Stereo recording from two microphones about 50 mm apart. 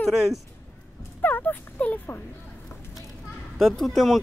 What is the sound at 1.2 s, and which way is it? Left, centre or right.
Speech, left.